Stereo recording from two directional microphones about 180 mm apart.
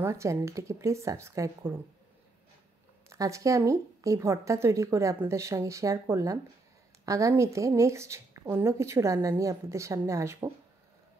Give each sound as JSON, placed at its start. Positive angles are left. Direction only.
{"t": 0.0, "sound": "speech", "side_deg": -15}
{"t": 3.1, "sound": "speech", "side_deg": -15}